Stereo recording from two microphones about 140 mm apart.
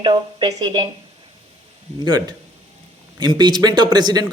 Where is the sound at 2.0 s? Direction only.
30° right (ahead or behind).